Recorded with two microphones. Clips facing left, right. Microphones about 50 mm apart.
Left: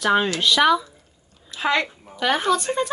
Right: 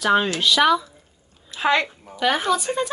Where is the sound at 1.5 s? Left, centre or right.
Right.